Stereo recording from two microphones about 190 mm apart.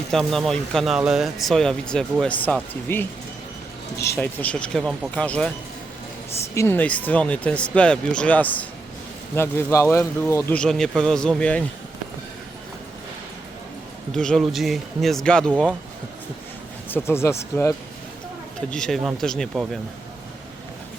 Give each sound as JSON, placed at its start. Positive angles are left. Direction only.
{"t": 0.1, "sound": "speech", "side_deg": 0}
{"t": 4.0, "sound": "a man's voice", "side_deg": 10}
{"t": 6.5, "sound": "a man's voice", "side_deg": 15}
{"t": 14.1, "sound": "speech", "side_deg": 0}
{"t": 16.9, "sound": "a man's voice", "side_deg": 15}
{"t": 18.7, "sound": "speech", "side_deg": 5}